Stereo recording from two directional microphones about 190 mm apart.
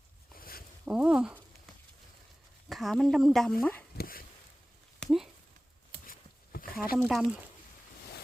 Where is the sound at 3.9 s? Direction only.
50° left (ahead or behind).